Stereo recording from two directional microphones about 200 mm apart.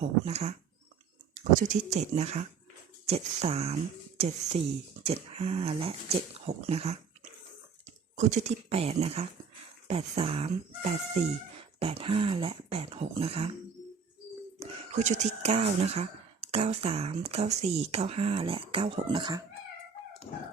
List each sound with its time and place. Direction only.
0.0 s speech: 30° right (ahead or behind)
8.1 s speech: 35° right (ahead or behind)
14.6 s speech: 35° right (ahead or behind)